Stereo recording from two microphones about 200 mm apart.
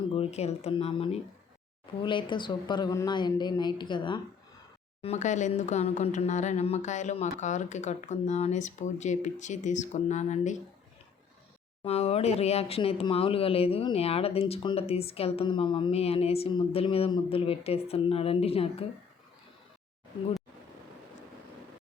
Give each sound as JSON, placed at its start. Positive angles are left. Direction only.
{"t": 0.1, "sound": "speech", "side_deg": 30}
{"t": 5.0, "sound": "speech", "side_deg": 35}
{"t": 11.8, "sound": "speech", "side_deg": 30}